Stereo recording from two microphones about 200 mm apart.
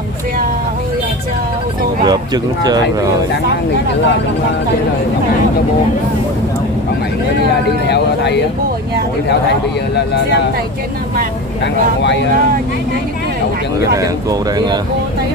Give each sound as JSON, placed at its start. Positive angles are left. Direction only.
{"t": 2.0, "sound": "speech", "side_deg": -20}
{"t": 7.9, "sound": "speech", "side_deg": 55}
{"t": 11.6, "sound": "speech", "side_deg": 60}
{"t": 13.9, "sound": "speech", "side_deg": -15}